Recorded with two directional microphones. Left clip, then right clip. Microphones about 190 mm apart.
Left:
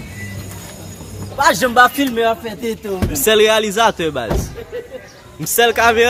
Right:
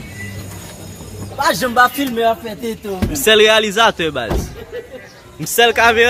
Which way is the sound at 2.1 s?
10° right (ahead or behind).